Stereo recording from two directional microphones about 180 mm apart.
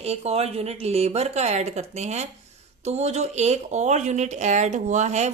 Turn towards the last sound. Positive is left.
turn(degrees=-40)  # may be behind; listen again after turning